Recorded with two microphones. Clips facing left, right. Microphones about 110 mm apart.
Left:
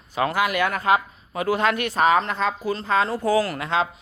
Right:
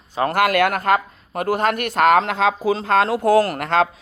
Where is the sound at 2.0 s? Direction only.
85° right.